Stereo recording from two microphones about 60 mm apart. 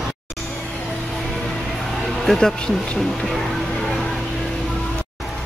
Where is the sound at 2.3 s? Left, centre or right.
Centre.